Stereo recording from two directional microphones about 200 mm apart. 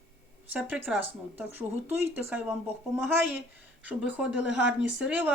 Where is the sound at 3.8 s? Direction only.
5° right (ahead or behind).